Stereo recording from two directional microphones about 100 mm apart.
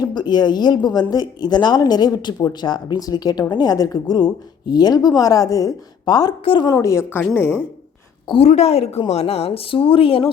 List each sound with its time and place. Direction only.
0.0 s a woman's voice: 45° left (ahead or behind)
6.4 s a woman's voice: 60° left (ahead or behind)
6.8 s a woman's voice: 25° left (ahead or behind)
8.4 s a woman's voice: 90° left; by 10.3 s 70° left (ahead or behind)